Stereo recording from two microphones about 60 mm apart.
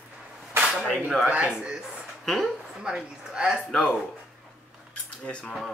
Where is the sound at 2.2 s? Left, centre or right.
Centre.